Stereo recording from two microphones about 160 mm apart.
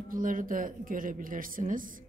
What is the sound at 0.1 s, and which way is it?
A woman's voice, 60° right (ahead or behind).